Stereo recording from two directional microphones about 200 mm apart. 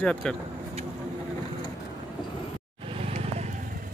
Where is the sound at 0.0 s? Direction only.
5° left (ahead or behind).